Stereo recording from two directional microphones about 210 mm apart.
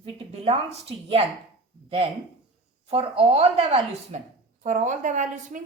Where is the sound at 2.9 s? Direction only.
30° right (ahead or behind).